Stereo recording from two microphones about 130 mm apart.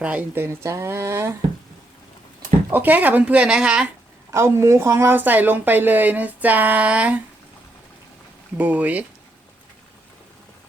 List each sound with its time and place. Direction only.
0.0 s speech: 10° right (ahead or behind)
2.6 s a woman's voice: 15° right (ahead or behind)
4.3 s a woman's voice: 20° right (ahead or behind)
8.5 s a woman's voice: 10° right (ahead or behind)